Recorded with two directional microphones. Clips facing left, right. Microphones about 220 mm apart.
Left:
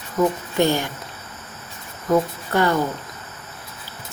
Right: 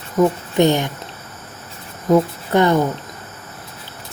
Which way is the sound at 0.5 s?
20° right (ahead or behind).